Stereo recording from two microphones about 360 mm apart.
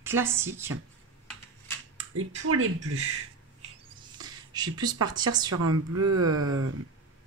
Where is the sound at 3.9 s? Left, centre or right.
Centre.